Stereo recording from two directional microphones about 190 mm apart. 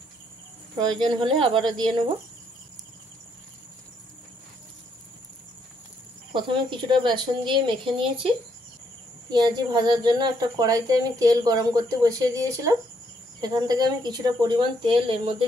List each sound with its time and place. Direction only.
0.7 s speech: 20° right (ahead or behind)
6.3 s speech: 25° right (ahead or behind)
9.3 s speech: 20° right (ahead or behind)